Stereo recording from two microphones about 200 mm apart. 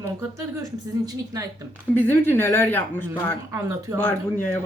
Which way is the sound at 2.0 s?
10° left (ahead or behind).